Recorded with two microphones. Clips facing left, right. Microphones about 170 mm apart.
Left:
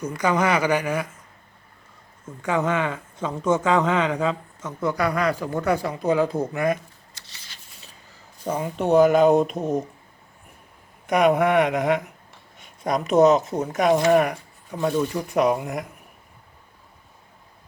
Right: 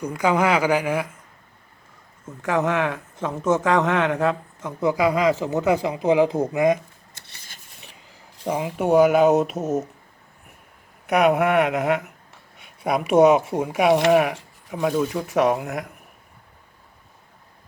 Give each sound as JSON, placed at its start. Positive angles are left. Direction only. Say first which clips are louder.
{"t": 0.0, "sound": "speech", "louder": "right 2 dB", "side_deg": -10}
{"t": 2.2, "sound": "speech", "louder": "right 1 dB", "side_deg": -5}
{"t": 4.8, "sound": "speech", "louder": "right 3 dB", "side_deg": -20}
{"t": 7.1, "sound": "a sound", "louder": "right 1 dB", "side_deg": -55}
{"t": 8.1, "sound": "speech", "louder": "right 2 dB", "side_deg": -10}
{"t": 11.0, "sound": "speech", "louder": "even", "side_deg": -5}